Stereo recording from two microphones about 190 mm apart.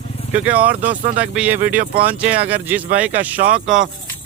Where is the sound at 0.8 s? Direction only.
40° right (ahead or behind).